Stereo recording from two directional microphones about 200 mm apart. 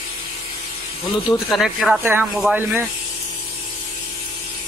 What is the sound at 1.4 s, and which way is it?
Speech, centre (ahead or behind).